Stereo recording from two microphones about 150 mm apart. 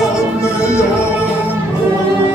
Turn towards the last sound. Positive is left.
turn(degrees=15)  # may be behind; listen again after turning